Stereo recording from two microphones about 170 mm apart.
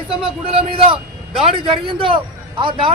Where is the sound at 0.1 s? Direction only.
30° right (ahead or behind).